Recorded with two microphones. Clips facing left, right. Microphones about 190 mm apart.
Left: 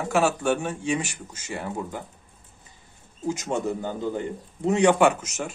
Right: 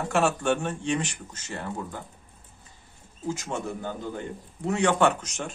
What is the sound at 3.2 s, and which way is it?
A man's voice, 20° left (ahead or behind).